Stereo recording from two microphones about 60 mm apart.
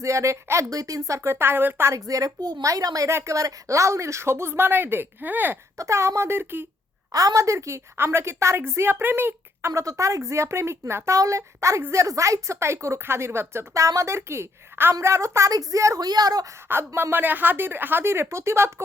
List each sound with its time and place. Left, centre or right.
0.0 s a woman's voice: right
0.7 s a woman's voice: right
2.0 s a woman's voice: right
3.2 s a woman's voice: right
5.7 s a woman's voice: right
7.1 s a woman's voice: right
7.9 s a woman's voice: right
9.7 s a woman's voice: right
11.2 s a woman's voice: right
13.7 s a woman's voice: right
15.5 s a woman's voice: right
16.6 s a woman's voice: right